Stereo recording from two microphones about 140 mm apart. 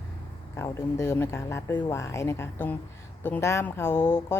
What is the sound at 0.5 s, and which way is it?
Speech, 20° left (ahead or behind).